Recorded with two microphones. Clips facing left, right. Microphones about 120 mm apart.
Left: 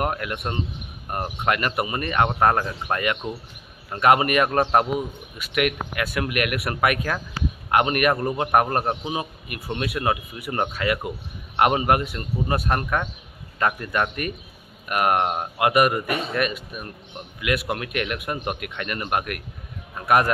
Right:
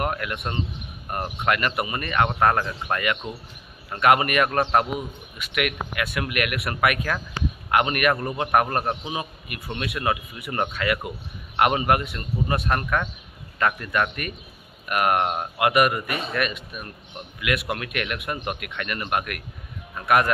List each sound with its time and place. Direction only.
0.0 s a man's voice: 30° left (ahead or behind)
7.4 s speech: 5° left (ahead or behind)
7.7 s a man's voice: 35° left (ahead or behind)